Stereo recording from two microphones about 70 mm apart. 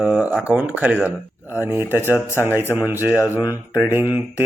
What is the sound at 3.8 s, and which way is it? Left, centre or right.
Speech, right.